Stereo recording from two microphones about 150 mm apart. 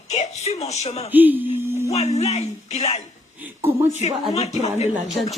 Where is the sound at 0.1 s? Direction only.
45° left (ahead or behind).